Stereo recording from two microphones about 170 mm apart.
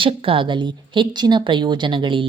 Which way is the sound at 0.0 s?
35° right (ahead or behind).